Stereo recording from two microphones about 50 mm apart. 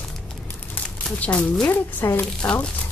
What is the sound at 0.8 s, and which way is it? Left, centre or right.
Crumpling, left.